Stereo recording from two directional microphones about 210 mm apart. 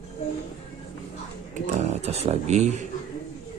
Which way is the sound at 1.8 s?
30° right (ahead or behind).